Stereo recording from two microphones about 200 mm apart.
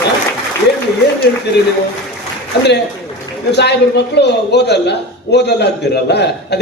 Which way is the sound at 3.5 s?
55° left (ahead or behind).